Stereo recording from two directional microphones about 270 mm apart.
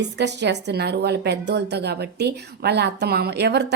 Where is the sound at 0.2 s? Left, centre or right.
Right.